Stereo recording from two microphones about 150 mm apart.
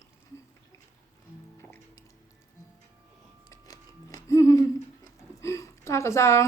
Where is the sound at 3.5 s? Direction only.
25° left (ahead or behind).